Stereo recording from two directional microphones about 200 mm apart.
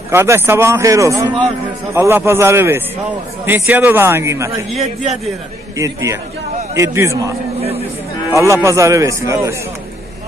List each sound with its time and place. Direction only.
0.1 s speech: 10° right (ahead or behind)
5.8 s speech: 15° right (ahead or behind)